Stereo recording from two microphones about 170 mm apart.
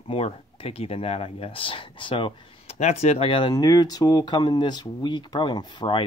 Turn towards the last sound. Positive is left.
turn(degrees=30)  # may be behind; listen again after turning